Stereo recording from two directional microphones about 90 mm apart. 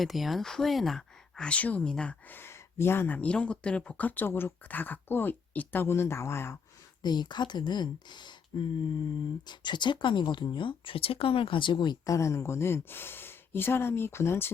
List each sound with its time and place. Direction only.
0.0 s speech: centre (ahead or behind); by 3.2 s 25° left (ahead or behind)
3.2 s speech: 15° left (ahead or behind); by 6.6 s 30° left (ahead or behind)
7.0 s speech: 55° left (ahead or behind)
9.5 s speech: 55° left (ahead or behind)
12.0 s speech: 35° left (ahead or behind)